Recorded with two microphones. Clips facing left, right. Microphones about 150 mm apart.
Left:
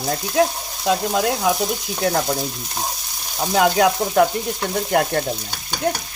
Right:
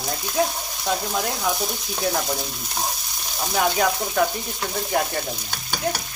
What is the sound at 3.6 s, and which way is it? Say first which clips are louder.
Speech: left 5 dB; 75° left (ahead or behind).